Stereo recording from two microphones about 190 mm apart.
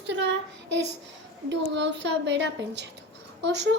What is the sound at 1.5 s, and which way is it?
A woman's voice, 70° right (ahead or behind).